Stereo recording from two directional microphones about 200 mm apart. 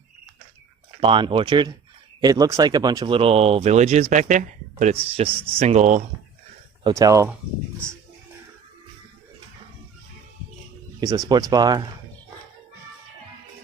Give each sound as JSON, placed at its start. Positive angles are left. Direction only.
{"t": 1.0, "sound": "speech", "side_deg": -25}
{"t": 6.8, "sound": "speech", "side_deg": -15}
{"t": 11.3, "sound": "speech", "side_deg": -20}